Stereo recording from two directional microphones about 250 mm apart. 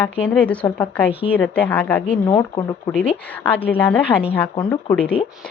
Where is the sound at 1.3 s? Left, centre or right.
Centre.